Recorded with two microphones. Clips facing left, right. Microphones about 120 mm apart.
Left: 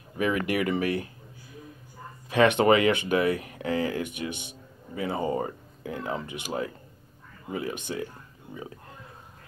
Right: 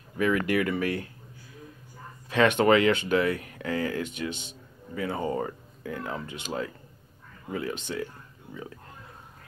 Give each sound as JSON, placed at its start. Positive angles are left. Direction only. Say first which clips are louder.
{"t": 0.2, "sound": "speech", "louder": "right 1 dB", "side_deg": 15}
{"t": 2.2, "sound": "speech", "louder": "left 1 dB", "side_deg": 15}
{"t": 7.9, "sound": "speech", "louder": "even", "side_deg": 20}